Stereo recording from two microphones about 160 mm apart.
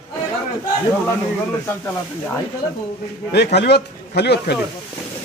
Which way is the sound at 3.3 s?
90° left.